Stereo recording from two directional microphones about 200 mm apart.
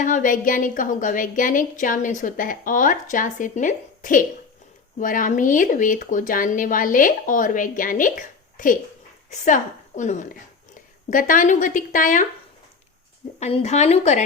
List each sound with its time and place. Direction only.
0.0 s a woman's voice: 40° left (ahead or behind)
13.4 s a woman's voice: 30° left (ahead or behind)